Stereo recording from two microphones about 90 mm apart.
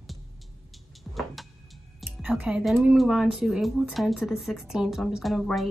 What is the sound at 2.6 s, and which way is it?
Speech, 5° right (ahead or behind).